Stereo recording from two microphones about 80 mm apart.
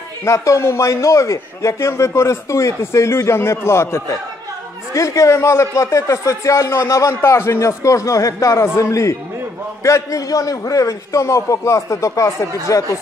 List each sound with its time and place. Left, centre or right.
0.2 s a man's voice: left